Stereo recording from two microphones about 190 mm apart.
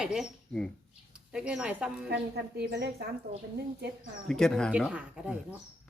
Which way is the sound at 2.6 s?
60° right (ahead or behind).